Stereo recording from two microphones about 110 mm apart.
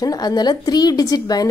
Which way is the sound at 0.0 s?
35° left (ahead or behind).